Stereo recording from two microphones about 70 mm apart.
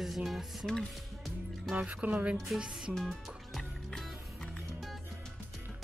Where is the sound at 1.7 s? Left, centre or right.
Right.